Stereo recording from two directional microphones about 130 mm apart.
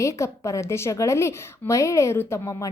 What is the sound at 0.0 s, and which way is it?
A woman's voice, 25° left (ahead or behind).